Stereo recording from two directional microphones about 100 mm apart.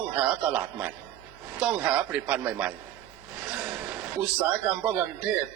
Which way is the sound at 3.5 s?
15° right (ahead or behind).